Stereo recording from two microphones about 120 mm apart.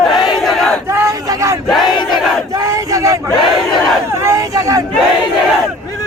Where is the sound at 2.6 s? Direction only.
25° right (ahead or behind).